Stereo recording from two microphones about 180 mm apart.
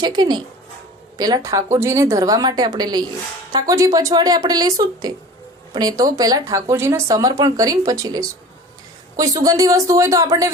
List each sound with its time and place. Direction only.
0.0 s speech: 25° right (ahead or behind)